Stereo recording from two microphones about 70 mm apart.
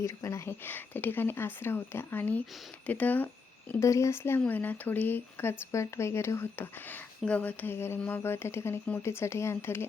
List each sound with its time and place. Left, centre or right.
0.0 s speech: left
0.6 s speech: left
3.8 s speech: left
4.4 s speech: left